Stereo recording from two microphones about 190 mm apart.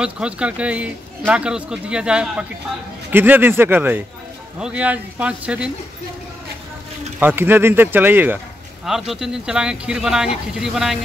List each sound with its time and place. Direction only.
0.0 s a man's voice: 5° right (ahead or behind)
7.2 s a man's voice: 10° right (ahead or behind)